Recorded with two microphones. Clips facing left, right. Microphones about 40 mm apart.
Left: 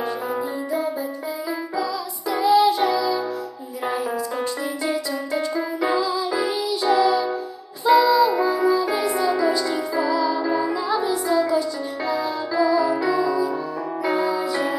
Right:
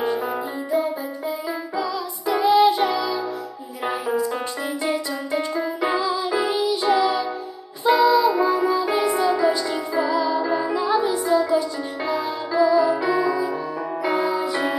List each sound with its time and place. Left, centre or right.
2.4 s music: right
4.8 s music: right
10.3 s music: centre
10.7 s music: right
14.0 s music: right